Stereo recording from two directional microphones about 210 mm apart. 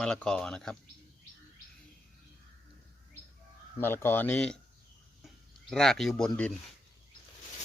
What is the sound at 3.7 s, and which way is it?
Speech, 10° left (ahead or behind).